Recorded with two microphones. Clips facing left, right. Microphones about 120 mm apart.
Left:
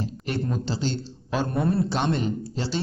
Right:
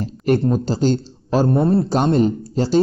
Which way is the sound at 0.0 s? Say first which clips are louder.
Right 11 dB; 50° right (ahead or behind).